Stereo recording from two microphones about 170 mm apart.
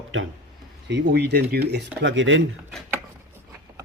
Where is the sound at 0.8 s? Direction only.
80° right.